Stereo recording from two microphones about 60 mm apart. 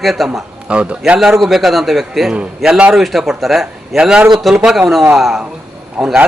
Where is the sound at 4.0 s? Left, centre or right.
Centre.